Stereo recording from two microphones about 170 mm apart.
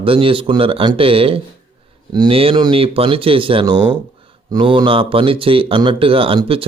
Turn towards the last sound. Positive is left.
turn(degrees=-30)  # may be behind; listen again after turning